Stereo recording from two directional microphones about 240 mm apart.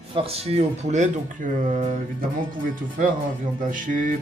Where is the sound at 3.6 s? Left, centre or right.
Right.